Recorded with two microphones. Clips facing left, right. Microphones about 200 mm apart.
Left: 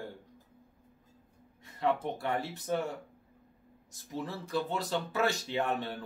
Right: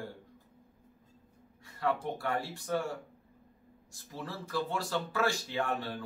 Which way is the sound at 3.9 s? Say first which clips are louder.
Left 4 dB; 20° left (ahead or behind).